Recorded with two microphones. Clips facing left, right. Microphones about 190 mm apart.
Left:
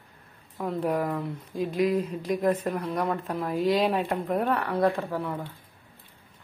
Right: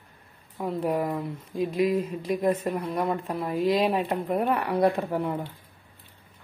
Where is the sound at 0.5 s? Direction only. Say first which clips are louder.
Even; 5° right (ahead or behind).